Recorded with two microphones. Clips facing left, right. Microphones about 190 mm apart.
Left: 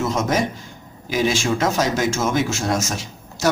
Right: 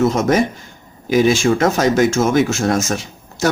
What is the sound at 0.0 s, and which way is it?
Speech, 60° right (ahead or behind).